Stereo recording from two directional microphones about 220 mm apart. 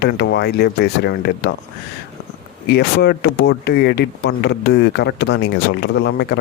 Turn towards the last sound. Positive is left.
turn(degrees=50)  # may be behind; listen again after turning